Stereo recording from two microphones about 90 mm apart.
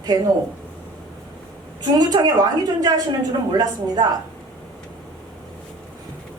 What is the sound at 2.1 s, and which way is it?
Speech, 50° right (ahead or behind).